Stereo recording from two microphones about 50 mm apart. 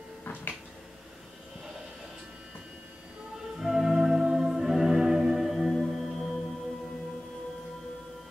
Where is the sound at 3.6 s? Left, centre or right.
Centre.